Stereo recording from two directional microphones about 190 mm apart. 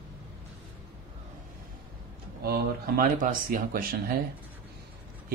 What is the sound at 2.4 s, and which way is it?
Speech, 50° right (ahead or behind).